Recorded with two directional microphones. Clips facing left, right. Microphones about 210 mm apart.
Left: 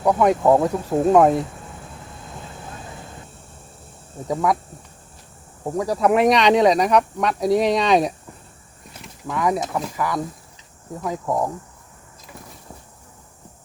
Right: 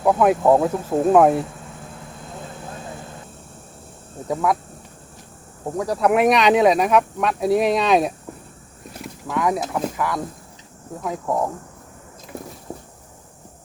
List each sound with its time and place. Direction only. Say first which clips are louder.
0.0 s speech: right 1 dB; 5° right (ahead or behind)
4.3 s speech: even; centre (ahead or behind)
5.7 s speech: even; centre (ahead or behind)
9.2 s speech: even; centre (ahead or behind)
12.7 s a sound: right 10 dB; 40° right (ahead or behind)